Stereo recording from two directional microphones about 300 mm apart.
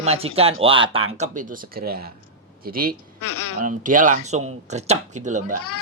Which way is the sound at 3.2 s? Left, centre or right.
Left.